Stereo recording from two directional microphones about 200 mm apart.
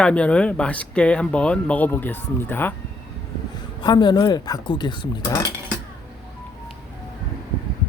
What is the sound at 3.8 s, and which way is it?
Speech, 20° left (ahead or behind).